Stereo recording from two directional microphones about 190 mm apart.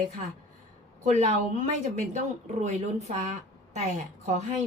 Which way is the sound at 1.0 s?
40° right (ahead or behind).